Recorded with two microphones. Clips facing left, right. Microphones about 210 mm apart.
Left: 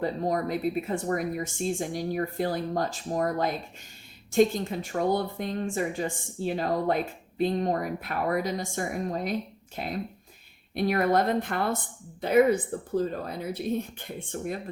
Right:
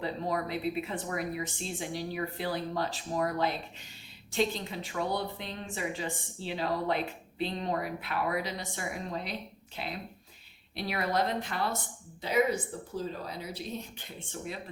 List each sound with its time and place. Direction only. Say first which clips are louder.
0.0 s speech: left 5 dB; 45° left (ahead or behind)